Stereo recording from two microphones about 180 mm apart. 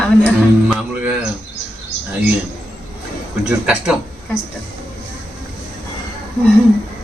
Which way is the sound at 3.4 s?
5° right (ahead or behind).